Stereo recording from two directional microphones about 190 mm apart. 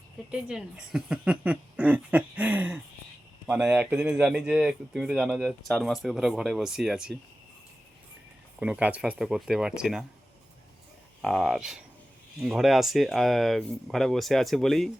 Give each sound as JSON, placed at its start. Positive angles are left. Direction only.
{"t": 0.3, "sound": "speech", "side_deg": -5}
{"t": 8.5, "sound": "speech", "side_deg": -5}
{"t": 11.2, "sound": "speech", "side_deg": 0}